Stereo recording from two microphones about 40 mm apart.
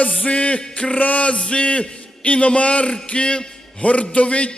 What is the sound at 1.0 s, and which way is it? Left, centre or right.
Music, left.